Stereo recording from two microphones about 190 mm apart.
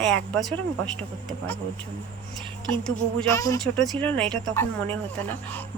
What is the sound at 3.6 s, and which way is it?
Speech, 5° left (ahead or behind).